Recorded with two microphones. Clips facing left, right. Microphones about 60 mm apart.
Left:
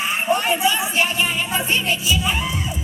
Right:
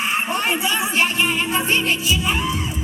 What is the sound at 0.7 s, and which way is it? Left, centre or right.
Music, right.